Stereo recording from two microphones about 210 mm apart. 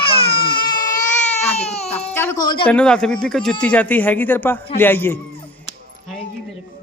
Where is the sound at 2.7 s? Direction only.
5° left (ahead or behind).